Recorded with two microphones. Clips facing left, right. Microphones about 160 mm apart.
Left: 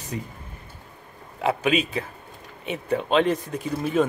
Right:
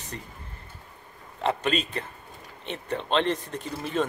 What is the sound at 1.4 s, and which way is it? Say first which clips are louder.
A man's voice: left 4 dB; 5° left (ahead or behind).